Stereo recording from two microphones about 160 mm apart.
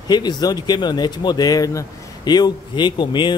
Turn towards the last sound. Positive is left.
turn(degrees=30)  # may be behind; listen again after turning